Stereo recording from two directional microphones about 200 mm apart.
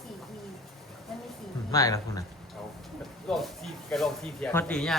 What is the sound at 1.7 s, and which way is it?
Speech, 15° left (ahead or behind).